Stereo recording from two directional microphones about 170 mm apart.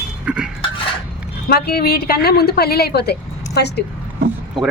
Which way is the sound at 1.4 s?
65° left (ahead or behind).